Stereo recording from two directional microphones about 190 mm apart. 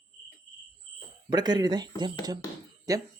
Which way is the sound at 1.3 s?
20° right (ahead or behind).